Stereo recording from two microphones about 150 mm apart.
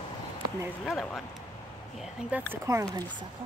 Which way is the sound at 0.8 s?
Centre (ahead or behind).